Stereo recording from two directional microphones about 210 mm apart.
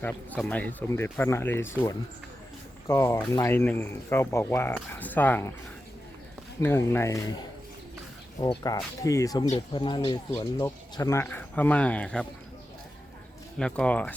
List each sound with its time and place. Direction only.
0.0 s speech: 5° left (ahead or behind)
2.8 s speech: 15° left (ahead or behind)
6.6 s speech: 10° left (ahead or behind)
13.6 s speech: 5° left (ahead or behind)